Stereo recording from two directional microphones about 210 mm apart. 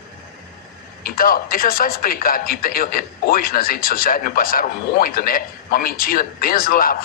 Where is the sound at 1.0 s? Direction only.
45° left (ahead or behind).